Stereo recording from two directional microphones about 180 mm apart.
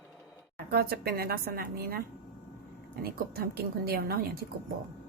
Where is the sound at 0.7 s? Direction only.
60° right (ahead or behind).